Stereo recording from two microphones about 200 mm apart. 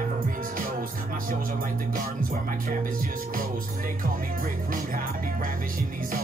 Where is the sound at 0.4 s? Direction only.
45° right (ahead or behind).